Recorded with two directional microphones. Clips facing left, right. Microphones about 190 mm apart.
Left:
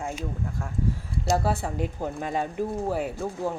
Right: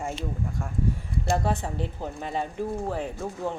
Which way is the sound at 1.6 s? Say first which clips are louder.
Left 3 dB; 10° left (ahead or behind).